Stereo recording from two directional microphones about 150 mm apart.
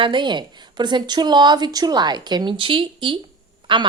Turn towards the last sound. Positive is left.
turn(degrees=-30)  # may be behind; listen again after turning